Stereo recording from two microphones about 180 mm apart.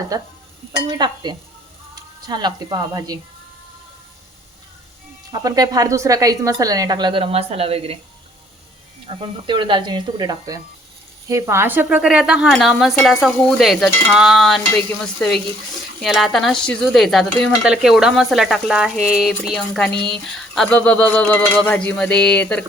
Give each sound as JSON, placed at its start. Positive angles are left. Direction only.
{"t": 0.1, "sound": "speech", "side_deg": -20}
{"t": 5.3, "sound": "speech", "side_deg": -20}
{"t": 9.0, "sound": "speech", "side_deg": -25}
{"t": 19.9, "sound": "speech", "side_deg": -30}
{"t": 20.2, "sound": "speech", "side_deg": 5}